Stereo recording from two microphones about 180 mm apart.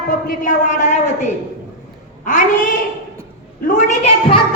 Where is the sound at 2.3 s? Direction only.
45° left (ahead or behind).